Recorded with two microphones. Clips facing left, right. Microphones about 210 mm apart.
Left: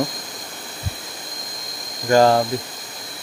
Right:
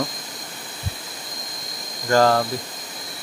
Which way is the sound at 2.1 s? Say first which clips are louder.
Left 3 dB; 15° left (ahead or behind).